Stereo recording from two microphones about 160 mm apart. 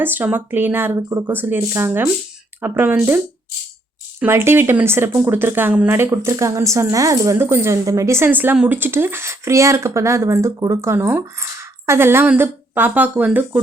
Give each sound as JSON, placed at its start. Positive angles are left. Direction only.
{"t": 0.0, "sound": "speech", "side_deg": -10}
{"t": 4.2, "sound": "speech", "side_deg": -15}